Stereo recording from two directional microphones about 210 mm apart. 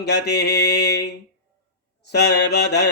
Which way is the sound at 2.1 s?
50° left (ahead or behind).